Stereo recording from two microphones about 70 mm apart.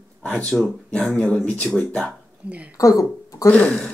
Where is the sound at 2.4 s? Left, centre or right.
Right.